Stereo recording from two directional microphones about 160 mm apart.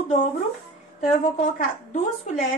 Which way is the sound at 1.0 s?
50° left (ahead or behind).